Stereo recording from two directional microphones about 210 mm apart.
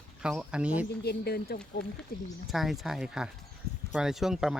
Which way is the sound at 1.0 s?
50° left (ahead or behind).